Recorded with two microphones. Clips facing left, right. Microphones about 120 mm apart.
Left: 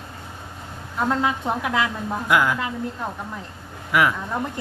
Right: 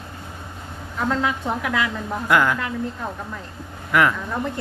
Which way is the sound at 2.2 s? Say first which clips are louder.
Right 1 dB; 10° left (ahead or behind).